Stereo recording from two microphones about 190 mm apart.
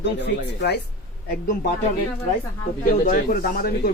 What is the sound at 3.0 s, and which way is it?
Speech, 50° left (ahead or behind).